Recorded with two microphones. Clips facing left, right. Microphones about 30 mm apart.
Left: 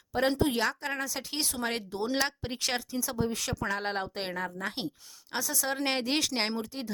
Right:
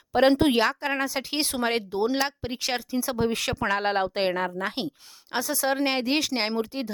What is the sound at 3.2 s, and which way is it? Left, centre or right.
Speech, right.